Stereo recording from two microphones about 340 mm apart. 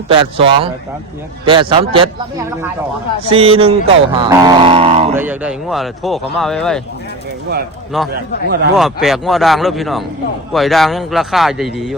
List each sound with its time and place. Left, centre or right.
0.1 s speech: centre
3.2 s speech: centre
5.1 s speech: centre
8.1 s speech: right
8.7 s speech: centre